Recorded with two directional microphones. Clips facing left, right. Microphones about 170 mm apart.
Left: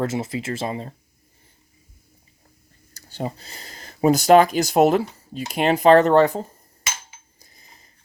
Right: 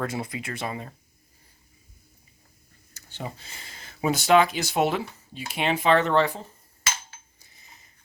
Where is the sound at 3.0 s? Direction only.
35° left (ahead or behind).